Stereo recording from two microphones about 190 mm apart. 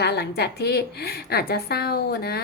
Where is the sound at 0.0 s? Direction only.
60° left (ahead or behind).